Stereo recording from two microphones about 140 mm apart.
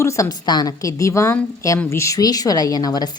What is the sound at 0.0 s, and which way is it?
Speech, 25° left (ahead or behind).